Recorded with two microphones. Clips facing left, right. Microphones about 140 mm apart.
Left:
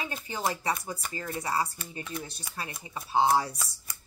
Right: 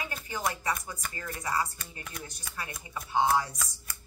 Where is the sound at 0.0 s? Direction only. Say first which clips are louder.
Left 2 dB; 25° left (ahead or behind).